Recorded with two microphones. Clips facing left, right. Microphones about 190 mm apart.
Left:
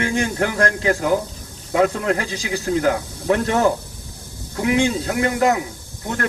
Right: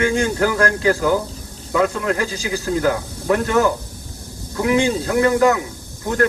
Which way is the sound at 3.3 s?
30° left (ahead or behind).